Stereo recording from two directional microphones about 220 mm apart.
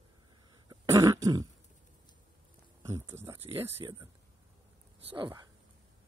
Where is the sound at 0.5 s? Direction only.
15° right (ahead or behind).